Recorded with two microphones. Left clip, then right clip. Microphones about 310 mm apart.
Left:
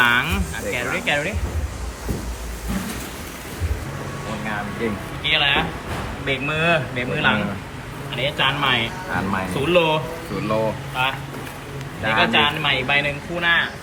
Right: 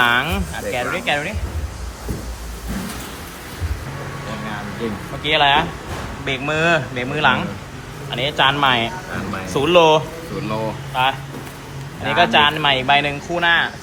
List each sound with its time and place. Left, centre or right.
0.0 s speech: centre
5.3 s speech: centre